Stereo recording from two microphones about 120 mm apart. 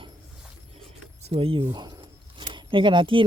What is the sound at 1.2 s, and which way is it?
Speech, 50° right (ahead or behind).